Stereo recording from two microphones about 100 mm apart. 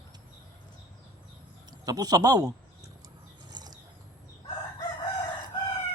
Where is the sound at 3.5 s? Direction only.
45° right (ahead or behind).